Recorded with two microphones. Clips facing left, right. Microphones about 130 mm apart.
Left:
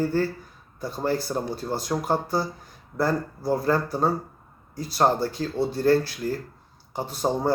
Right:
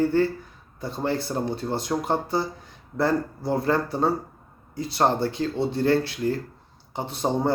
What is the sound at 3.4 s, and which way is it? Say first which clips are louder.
Speech: left 2 dB; 25° right (ahead or behind).